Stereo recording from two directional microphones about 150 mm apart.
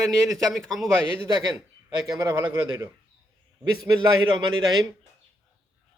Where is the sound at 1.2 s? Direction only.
20° right (ahead or behind).